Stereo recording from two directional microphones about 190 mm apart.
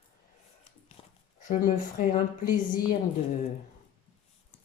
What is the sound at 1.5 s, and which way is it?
Speech, 45° left (ahead or behind).